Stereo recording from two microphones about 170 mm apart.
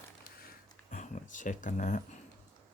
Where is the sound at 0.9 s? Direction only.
45° left (ahead or behind).